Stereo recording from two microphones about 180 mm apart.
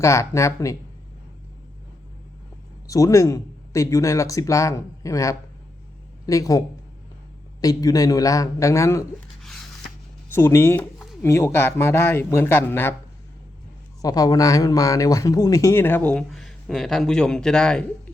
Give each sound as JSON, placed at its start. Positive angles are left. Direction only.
{"t": 0.0, "sound": "speech", "side_deg": 15}
{"t": 2.8, "sound": "a man's voice", "side_deg": 20}
{"t": 7.6, "sound": "a man's voice", "side_deg": 20}
{"t": 9.4, "sound": "a sound", "side_deg": 0}
{"t": 10.2, "sound": "speech", "side_deg": 15}
{"t": 14.0, "sound": "speech", "side_deg": 20}